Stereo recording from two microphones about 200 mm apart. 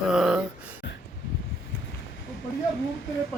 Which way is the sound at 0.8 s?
65° left (ahead or behind).